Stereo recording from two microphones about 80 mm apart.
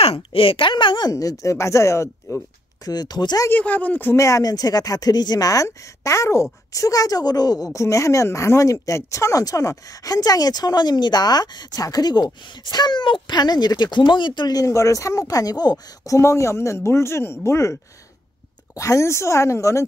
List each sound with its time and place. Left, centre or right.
0.6 s a woman's voice: left
1.1 s speech: left
2.8 s speech: left
3.4 s speech: left
4.2 s a woman's voice: left
5.7 s a woman's voice: left
16.2 s speech: left
18.8 s speech: left